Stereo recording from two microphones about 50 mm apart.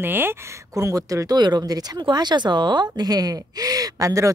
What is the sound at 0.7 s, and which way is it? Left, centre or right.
Speech, right.